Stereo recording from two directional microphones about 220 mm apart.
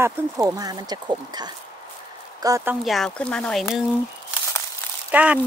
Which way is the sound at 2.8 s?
Centre (ahead or behind).